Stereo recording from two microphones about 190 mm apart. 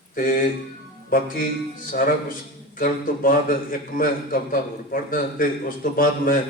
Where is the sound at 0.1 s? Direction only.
45° left (ahead or behind).